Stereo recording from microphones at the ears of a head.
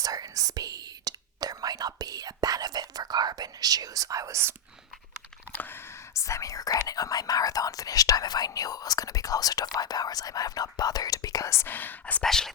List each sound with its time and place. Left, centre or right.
0.0 s whispering: right
6.1 s speech: left